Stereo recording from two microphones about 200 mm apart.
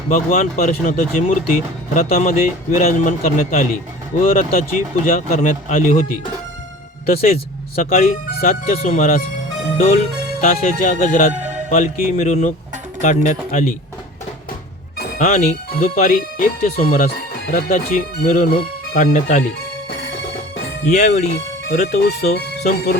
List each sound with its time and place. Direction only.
0.1 s a man's voice: 45° left (ahead or behind)
7.1 s speech: 30° left (ahead or behind)
7.9 s a man's voice: 45° left (ahead or behind)
15.2 s a man's voice: 35° left (ahead or behind)
19.9 s music: 55° left (ahead or behind)
20.8 s speech: 35° left (ahead or behind)
21.7 s a man's voice: 55° left (ahead or behind)